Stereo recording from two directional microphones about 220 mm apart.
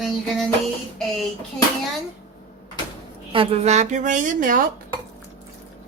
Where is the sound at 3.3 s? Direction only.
25° right (ahead or behind).